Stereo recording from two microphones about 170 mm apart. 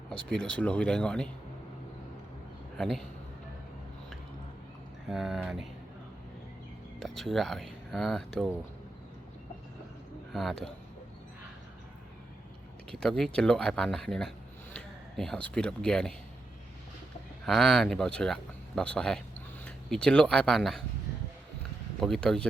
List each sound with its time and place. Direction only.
0.1 s speech: 5° left (ahead or behind)
2.7 s speech: centre (ahead or behind)
5.0 s speech: centre (ahead or behind)
7.0 s speech: centre (ahead or behind)
10.3 s speech: centre (ahead or behind)
12.9 s speech: 5° left (ahead or behind)
17.4 s speech: centre (ahead or behind)
22.0 s speech: centre (ahead or behind)